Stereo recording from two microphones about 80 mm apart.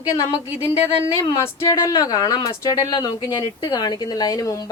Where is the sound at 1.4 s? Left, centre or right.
Left.